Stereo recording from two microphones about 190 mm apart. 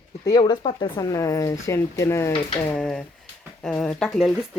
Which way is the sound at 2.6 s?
5° left (ahead or behind).